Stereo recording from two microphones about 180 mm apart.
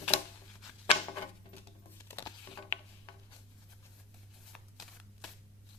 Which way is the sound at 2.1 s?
20° left (ahead or behind).